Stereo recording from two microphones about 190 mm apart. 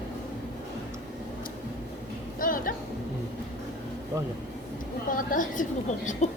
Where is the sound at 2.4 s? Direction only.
45° left (ahead or behind).